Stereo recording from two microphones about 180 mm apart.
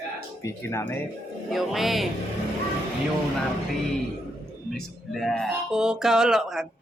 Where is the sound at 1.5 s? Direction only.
Centre (ahead or behind).